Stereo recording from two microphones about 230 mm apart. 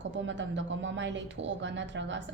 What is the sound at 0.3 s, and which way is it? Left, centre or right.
A woman's voice, right.